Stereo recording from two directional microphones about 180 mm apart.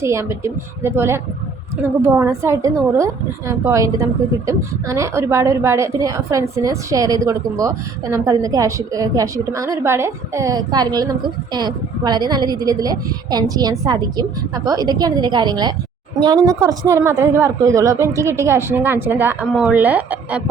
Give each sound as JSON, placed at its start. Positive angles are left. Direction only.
{"t": 0.0, "sound": "a woman's voice", "side_deg": -15}